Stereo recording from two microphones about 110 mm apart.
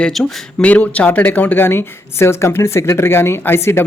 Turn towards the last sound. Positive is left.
turn(degrees=20)  # may be behind; listen again after turning